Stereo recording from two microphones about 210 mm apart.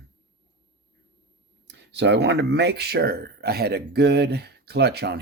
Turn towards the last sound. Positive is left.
turn(degrees=-50)  # may be behind; listen again after turning